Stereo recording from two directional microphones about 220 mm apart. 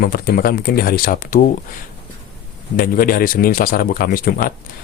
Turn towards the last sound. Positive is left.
turn(degrees=40)  # may be behind; listen again after turning